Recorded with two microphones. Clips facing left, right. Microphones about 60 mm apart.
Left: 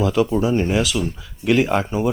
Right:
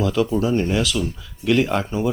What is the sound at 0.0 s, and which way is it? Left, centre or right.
Speech, centre.